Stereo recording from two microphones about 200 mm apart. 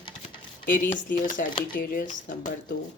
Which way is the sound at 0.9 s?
40° left (ahead or behind).